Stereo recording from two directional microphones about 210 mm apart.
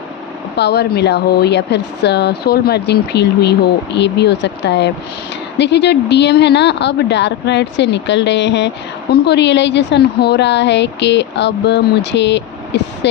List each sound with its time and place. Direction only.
0.5 s a woman's voice: 50° left (ahead or behind)